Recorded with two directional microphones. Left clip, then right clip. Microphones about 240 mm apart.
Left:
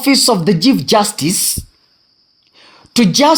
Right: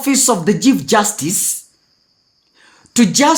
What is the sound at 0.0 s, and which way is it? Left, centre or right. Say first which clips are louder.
Speech: left 3 dB; left.